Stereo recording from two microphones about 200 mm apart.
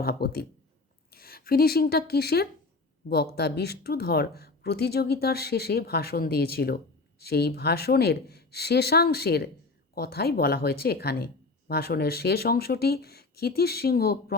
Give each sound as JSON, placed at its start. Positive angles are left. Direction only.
{"t": 0.0, "sound": "speech", "side_deg": 50}